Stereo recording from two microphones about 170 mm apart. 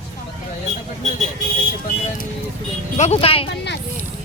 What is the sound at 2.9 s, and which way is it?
Speech, 40° left (ahead or behind).